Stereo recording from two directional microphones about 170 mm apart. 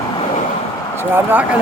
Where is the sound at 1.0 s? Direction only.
10° right (ahead or behind).